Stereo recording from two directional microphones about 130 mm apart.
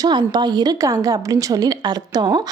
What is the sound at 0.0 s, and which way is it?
A woman's voice, 35° right (ahead or behind).